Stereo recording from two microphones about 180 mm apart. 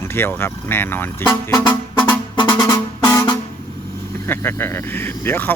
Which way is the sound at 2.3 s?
25° left (ahead or behind).